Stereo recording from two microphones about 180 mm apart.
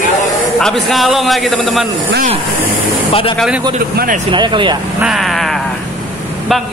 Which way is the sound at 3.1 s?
30° left (ahead or behind).